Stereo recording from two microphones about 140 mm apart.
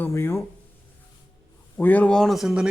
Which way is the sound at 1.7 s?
15° left (ahead or behind).